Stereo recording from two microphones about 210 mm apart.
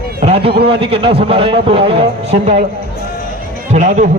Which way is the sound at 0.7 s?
25° right (ahead or behind).